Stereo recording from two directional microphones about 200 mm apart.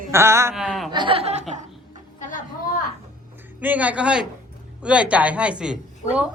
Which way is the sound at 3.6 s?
10° right (ahead or behind).